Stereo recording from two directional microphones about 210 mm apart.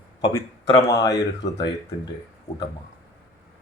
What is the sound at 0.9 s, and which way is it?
Speech, 15° left (ahead or behind).